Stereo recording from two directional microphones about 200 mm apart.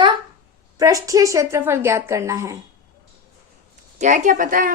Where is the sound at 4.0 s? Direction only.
40° right (ahead or behind).